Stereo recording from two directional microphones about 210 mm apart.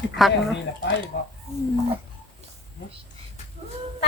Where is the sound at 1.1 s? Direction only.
55° left (ahead or behind).